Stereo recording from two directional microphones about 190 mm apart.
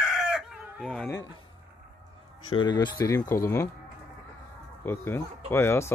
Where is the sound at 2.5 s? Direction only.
25° left (ahead or behind).